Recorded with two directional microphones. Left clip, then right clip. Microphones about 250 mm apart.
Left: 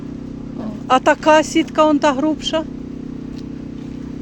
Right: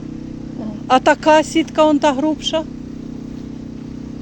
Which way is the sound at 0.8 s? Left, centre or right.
Centre.